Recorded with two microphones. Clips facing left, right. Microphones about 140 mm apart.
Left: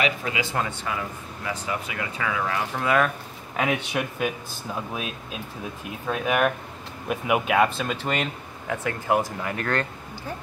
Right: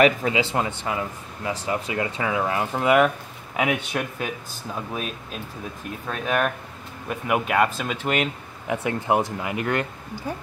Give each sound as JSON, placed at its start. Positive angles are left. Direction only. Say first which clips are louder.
{"t": 0.2, "sound": "speech", "louder": "right 4 dB", "side_deg": -25}
{"t": 3.5, "sound": "speech", "louder": "right 1 dB", "side_deg": -5}
{"t": 4.7, "sound": "speech", "louder": "right 2 dB", "side_deg": 5}
{"t": 8.6, "sound": "speech", "louder": "right 2 dB", "side_deg": -20}